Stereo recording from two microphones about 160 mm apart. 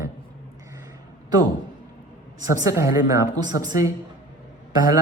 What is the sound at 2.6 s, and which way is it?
Speech, 20° right (ahead or behind).